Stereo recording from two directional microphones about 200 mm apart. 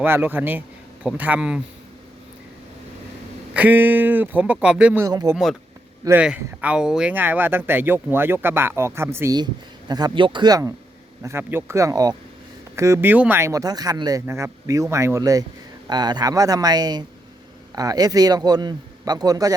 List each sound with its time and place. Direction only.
0.0 s speech: 10° right (ahead or behind)
3.5 s speech: 10° right (ahead or behind)
5.0 s a man's voice: 15° right (ahead or behind)